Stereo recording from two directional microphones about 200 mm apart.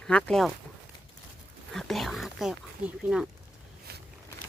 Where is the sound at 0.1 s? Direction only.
5° left (ahead or behind).